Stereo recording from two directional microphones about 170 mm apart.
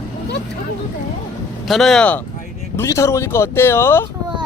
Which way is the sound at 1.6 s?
Centre (ahead or behind).